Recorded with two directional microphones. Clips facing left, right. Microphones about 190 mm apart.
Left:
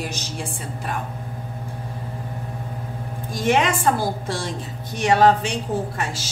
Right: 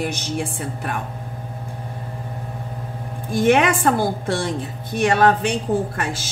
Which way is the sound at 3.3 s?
55° right (ahead or behind).